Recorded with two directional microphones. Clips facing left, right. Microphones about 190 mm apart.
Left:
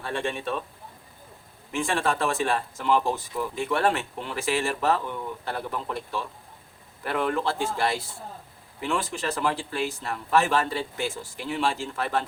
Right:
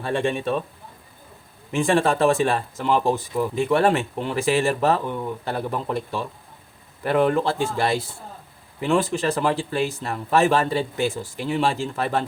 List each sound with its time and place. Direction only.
0.0 s speech: 20° right (ahead or behind)
1.7 s speech: 20° right (ahead or behind)